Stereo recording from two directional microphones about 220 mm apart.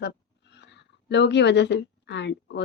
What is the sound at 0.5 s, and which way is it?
A woman's voice, 50° left (ahead or behind).